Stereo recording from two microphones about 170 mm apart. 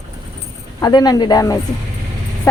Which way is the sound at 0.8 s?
25° left (ahead or behind).